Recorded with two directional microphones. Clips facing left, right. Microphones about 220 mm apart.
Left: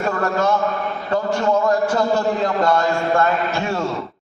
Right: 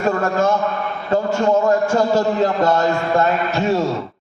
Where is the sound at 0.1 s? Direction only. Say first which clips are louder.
Right 2 dB; 25° right (ahead or behind).